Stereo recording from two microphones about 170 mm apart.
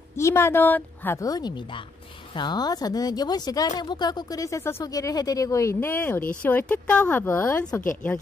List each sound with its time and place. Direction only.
0.1 s speech: 15° left (ahead or behind)